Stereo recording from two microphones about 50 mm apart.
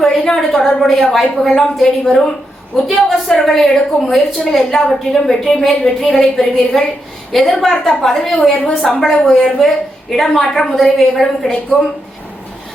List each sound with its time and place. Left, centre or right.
0.3 s a woman's voice: centre
8.4 s a woman's voice: centre
9.0 s a woman's voice: centre